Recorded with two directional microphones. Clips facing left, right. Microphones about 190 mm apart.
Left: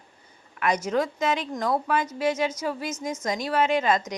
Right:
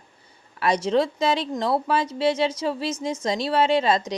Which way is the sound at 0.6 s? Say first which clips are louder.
Right 3 dB; 30° right (ahead or behind).